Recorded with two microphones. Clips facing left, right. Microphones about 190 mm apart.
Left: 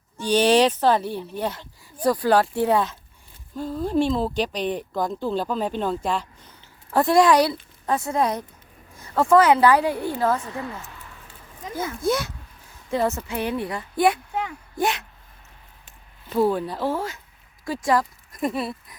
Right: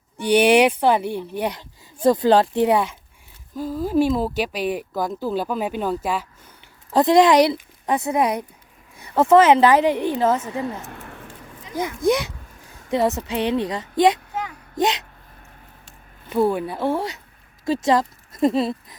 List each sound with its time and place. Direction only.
0.2 s speech: 15° right (ahead or behind)
6.9 s a woman's voice: 20° right (ahead or behind)
10.8 s a sound: 65° right (ahead or behind)
11.7 s a woman's voice: 15° right (ahead or behind)
16.5 s speech: 10° right (ahead or behind)
16.8 s a woman's voice: 20° right (ahead or behind)